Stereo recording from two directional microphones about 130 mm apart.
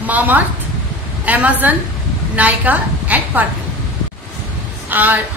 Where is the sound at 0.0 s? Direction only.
15° right (ahead or behind).